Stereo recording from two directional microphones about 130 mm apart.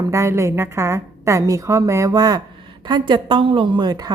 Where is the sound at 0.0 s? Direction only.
20° right (ahead or behind).